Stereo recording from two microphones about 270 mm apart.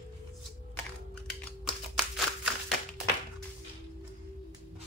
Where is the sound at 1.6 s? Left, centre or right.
Centre.